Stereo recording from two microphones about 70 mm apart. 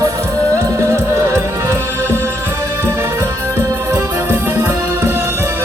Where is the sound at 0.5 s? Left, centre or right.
Right.